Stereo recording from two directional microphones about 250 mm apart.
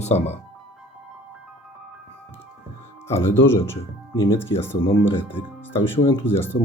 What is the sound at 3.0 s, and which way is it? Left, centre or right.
Speech, centre.